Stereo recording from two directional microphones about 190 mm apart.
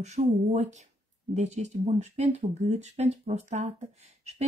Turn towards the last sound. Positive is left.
turn(degrees=-35)  # may be behind; listen again after turning